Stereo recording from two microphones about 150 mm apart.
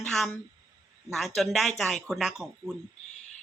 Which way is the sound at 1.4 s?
Centre (ahead or behind).